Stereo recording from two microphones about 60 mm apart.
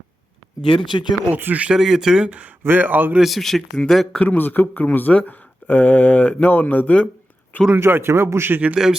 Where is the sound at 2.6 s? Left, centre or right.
Right.